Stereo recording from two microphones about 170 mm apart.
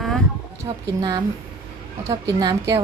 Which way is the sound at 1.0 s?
25° right (ahead or behind).